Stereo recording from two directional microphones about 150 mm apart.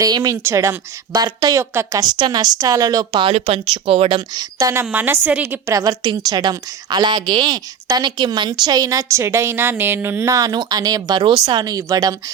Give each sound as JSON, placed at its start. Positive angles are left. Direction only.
{"t": 0.0, "sound": "a woman's voice", "side_deg": -25}